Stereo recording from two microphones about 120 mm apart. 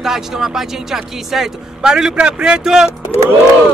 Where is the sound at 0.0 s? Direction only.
5° right (ahead or behind).